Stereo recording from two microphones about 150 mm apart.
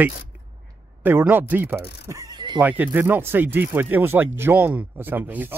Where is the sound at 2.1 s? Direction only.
25° right (ahead or behind).